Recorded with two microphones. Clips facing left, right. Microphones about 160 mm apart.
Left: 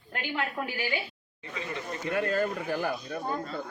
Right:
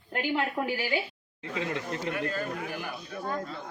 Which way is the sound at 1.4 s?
90° right.